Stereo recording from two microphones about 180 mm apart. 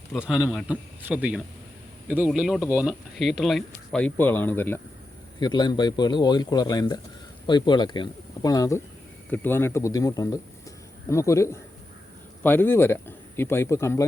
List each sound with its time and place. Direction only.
0.1 s speech: 5° right (ahead or behind); by 4.8 s 10° left (ahead or behind)
5.4 s speech: 25° left (ahead or behind)